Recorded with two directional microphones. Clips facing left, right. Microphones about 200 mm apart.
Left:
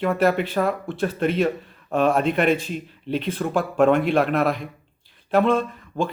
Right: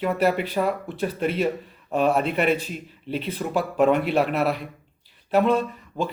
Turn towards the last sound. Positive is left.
turn(degrees=-10)  # may be behind; listen again after turning